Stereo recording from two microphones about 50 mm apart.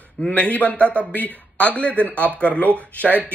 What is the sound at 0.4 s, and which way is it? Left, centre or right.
Speech, left.